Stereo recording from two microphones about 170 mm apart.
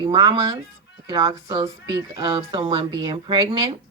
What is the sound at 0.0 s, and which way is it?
A woman's voice, 25° right (ahead or behind).